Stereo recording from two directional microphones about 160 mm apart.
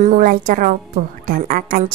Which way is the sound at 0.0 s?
55° right (ahead or behind).